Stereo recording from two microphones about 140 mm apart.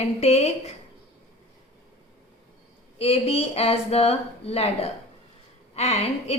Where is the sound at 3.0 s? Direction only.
45° left (ahead or behind).